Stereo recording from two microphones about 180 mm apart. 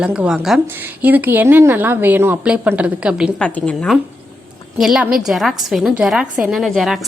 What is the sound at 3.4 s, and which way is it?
A woman's voice, 5° left (ahead or behind).